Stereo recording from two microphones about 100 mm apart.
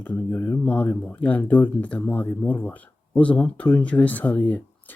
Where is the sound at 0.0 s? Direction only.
20° left (ahead or behind).